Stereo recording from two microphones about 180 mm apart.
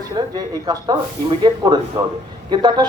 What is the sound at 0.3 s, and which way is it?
A man's voice, 20° right (ahead or behind).